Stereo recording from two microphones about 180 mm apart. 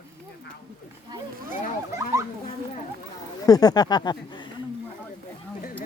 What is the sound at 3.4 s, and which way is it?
Speech, 20° left (ahead or behind).